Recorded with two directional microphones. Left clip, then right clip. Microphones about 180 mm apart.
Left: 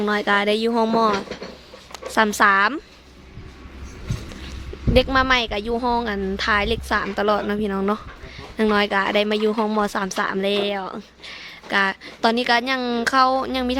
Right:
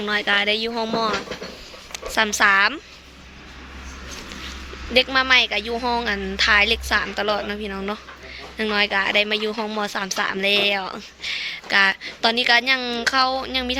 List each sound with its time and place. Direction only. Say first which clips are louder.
0.0 s a woman's voice: left 1 dB; 35° left (ahead or behind)
4.9 s a woman's voice: right 1 dB; 35° left (ahead or behind)